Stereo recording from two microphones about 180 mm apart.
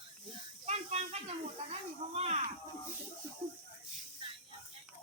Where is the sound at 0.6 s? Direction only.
35° right (ahead or behind).